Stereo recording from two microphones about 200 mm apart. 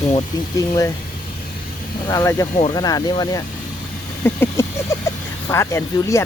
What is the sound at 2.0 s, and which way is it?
Speech, 15° left (ahead or behind).